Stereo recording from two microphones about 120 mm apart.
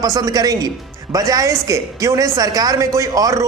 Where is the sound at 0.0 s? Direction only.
30° right (ahead or behind).